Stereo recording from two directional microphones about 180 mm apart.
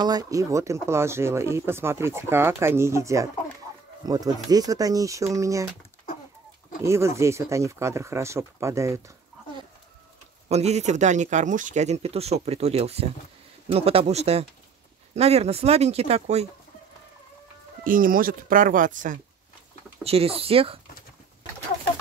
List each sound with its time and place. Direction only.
0.0 s speech: 20° right (ahead or behind)
6.8 s speech: 15° right (ahead or behind)
10.5 s speech: 35° right (ahead or behind)
17.8 s speech: 50° right (ahead or behind)
20.0 s speech: 35° right (ahead or behind)